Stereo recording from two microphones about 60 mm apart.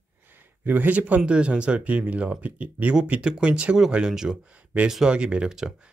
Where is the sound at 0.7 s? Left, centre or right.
Right.